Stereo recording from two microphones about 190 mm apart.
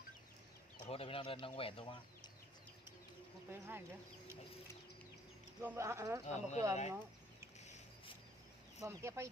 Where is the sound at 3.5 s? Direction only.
10° right (ahead or behind).